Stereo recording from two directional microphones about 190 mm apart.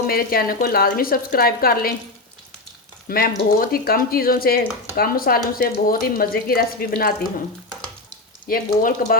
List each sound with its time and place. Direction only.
0.1 s speech: 50° left (ahead or behind)
3.1 s speech: 50° left (ahead or behind)
8.4 s speech: 50° left (ahead or behind)